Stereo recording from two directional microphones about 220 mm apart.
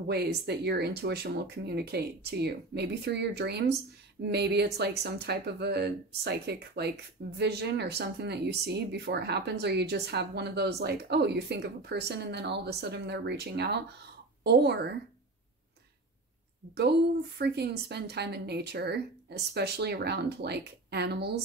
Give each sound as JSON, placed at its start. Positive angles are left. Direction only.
{"t": 0.1, "sound": "a woman's voice", "side_deg": -50}
{"t": 17.4, "sound": "speech", "side_deg": -50}